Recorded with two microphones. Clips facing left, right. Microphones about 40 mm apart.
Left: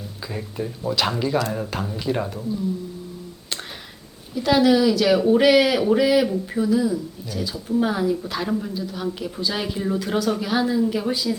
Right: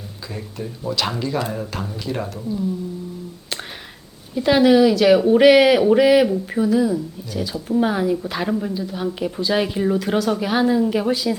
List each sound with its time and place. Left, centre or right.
0.3 s speech: centre
4.4 s speech: centre